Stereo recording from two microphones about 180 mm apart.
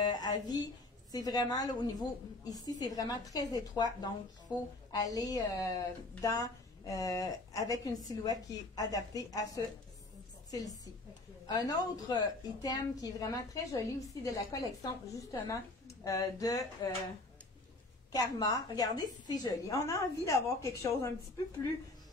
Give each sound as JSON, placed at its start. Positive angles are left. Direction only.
{"t": 0.0, "sound": "speech", "side_deg": 20}
{"t": 4.9, "sound": "speech", "side_deg": 20}
{"t": 11.4, "sound": "a woman's voice", "side_deg": 20}
{"t": 18.1, "sound": "speech", "side_deg": 20}